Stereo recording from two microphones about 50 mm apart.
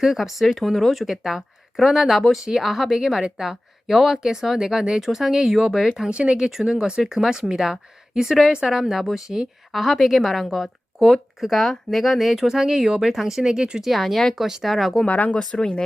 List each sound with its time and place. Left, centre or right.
0.0 s a woman's voice: centre
6.1 s a woman's voice: right
13.9 s a woman's voice: centre
14.3 s a woman's voice: centre
15.0 s speech: left
15.4 s speech: centre